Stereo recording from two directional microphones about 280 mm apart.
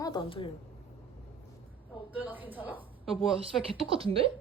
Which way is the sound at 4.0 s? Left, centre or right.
Centre.